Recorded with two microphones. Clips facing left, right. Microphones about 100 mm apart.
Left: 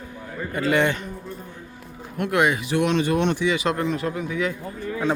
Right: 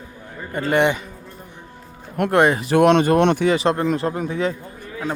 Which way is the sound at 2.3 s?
35° right (ahead or behind).